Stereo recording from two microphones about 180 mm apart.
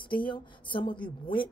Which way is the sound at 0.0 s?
25° left (ahead or behind).